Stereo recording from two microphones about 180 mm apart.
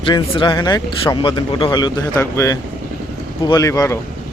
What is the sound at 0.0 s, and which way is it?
Speech, 25° left (ahead or behind).